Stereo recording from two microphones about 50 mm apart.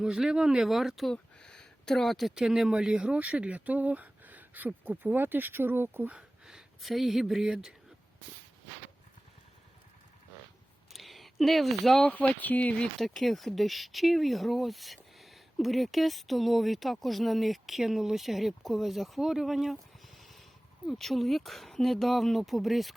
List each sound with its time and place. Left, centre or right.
0.0 s speech: centre
0.7 s speech: centre
1.1 s a sound: centre
2.3 s speech: centre
3.2 s speech: right
6.1 s speech: centre
10.9 s a sound: centre
12.0 s speech: left
13.0 s speech: centre